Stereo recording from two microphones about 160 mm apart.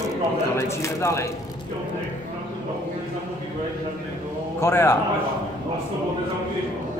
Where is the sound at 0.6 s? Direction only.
20° left (ahead or behind).